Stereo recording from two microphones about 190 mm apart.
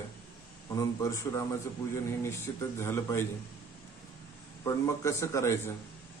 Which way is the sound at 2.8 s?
10° left (ahead or behind).